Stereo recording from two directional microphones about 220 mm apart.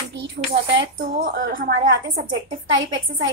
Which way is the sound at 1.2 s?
40° right (ahead or behind).